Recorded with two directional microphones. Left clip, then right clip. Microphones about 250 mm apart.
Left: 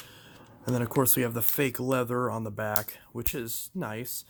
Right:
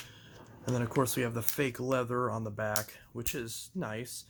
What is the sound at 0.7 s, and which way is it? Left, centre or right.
Speech, left.